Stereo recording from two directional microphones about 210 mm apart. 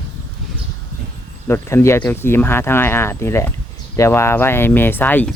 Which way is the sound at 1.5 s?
10° left (ahead or behind).